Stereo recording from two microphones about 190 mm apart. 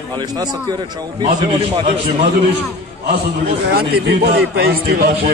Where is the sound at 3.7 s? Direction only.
55° right (ahead or behind).